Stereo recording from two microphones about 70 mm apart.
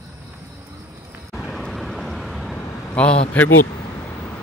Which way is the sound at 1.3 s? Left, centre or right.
Centre.